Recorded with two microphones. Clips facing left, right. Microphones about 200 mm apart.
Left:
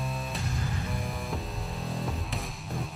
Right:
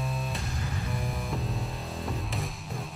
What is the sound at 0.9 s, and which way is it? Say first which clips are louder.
Music: right 1 dB; centre (ahead or behind).